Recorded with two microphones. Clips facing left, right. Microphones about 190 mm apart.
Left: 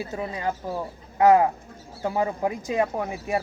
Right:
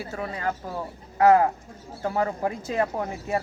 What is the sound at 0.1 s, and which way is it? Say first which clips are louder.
A man's voice: left 1 dB; 20° left (ahead or behind).